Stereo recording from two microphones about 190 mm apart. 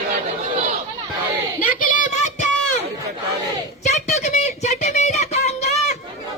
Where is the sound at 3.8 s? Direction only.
40° left (ahead or behind).